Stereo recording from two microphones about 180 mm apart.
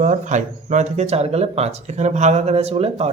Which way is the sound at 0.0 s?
40° right (ahead or behind).